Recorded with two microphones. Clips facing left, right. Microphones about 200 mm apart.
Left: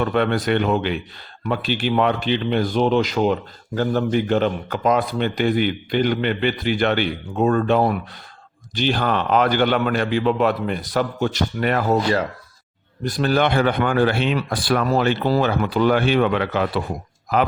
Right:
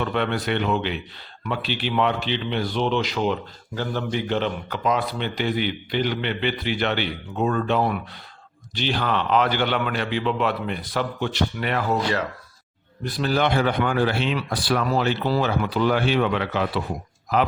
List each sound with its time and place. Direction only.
0.0 s a man's voice: 45° left (ahead or behind)